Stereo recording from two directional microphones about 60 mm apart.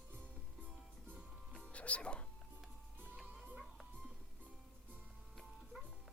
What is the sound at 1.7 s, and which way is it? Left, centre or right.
Music, left.